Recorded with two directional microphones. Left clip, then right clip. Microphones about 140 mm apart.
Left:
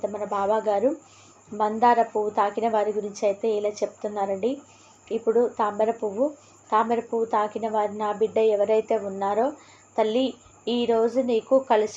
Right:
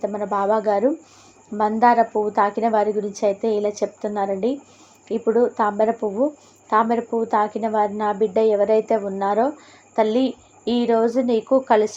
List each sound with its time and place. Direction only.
0.0 s a woman's voice: 50° right (ahead or behind)